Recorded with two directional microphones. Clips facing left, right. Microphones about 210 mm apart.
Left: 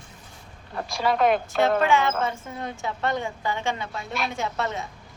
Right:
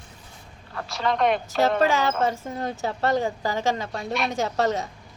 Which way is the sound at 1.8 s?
40° right (ahead or behind).